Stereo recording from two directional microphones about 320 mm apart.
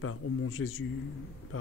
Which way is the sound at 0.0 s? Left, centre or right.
Left.